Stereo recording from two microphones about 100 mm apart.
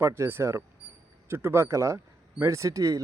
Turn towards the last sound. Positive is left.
turn(degrees=-35)  # may be behind; listen again after turning